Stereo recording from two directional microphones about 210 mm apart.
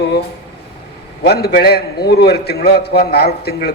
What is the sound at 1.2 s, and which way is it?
A man's voice, 50° left (ahead or behind).